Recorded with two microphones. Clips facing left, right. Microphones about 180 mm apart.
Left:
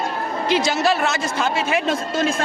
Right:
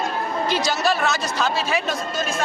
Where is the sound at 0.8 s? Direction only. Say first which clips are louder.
Left 2 dB; 25° left (ahead or behind).